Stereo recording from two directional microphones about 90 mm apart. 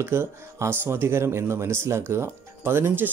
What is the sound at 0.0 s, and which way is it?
Speech, 30° right (ahead or behind).